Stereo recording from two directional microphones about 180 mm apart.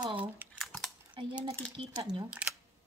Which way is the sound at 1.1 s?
25° right (ahead or behind).